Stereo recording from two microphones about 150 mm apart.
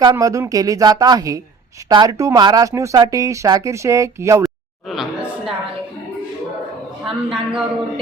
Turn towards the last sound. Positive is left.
turn(degrees=0)  # may be behind; listen again after turning